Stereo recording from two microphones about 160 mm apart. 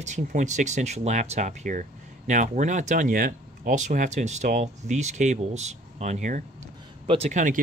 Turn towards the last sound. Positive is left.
turn(degrees=-40)  # may be behind; listen again after turning